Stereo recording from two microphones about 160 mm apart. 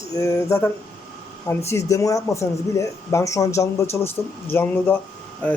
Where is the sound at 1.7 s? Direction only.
20° left (ahead or behind).